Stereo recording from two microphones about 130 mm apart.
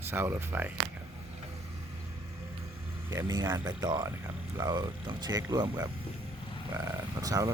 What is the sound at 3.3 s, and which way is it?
Speech, 30° right (ahead or behind).